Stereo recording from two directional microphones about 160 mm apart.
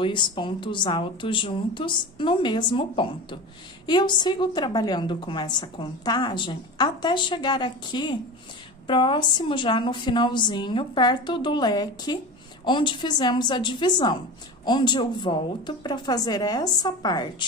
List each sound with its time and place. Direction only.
0.0 s a woman's voice: 30° left (ahead or behind)